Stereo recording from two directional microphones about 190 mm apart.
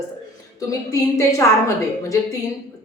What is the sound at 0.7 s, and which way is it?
A woman's voice, 15° left (ahead or behind).